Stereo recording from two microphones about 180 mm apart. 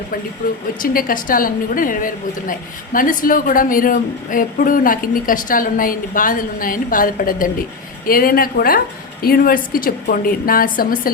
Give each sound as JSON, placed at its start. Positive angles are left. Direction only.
{"t": 0.8, "sound": "a woman's voice", "side_deg": 50}